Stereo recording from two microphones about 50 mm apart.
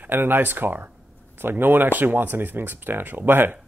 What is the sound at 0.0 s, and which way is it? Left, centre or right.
Speech, right.